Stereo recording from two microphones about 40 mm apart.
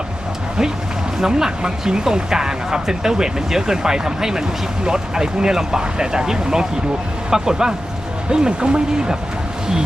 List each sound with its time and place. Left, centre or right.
1.2 s speech: centre